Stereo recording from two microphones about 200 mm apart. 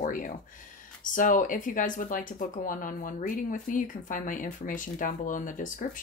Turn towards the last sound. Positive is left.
turn(degrees=40)  # may be behind; listen again after turning